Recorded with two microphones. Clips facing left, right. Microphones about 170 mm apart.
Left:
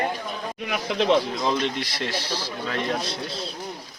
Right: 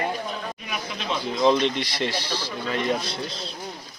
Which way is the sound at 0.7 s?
75° left (ahead or behind).